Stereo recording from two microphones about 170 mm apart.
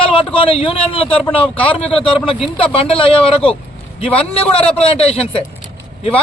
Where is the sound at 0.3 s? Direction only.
30° left (ahead or behind).